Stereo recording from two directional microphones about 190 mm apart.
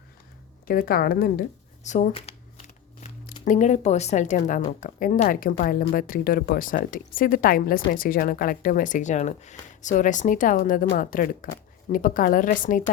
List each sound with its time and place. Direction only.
0.7 s speech: 50° left (ahead or behind)
1.8 s shuffling cards: 40° left (ahead or behind)
3.4 s speech: 40° left (ahead or behind)